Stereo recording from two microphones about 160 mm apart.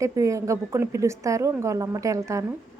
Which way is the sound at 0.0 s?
20° right (ahead or behind).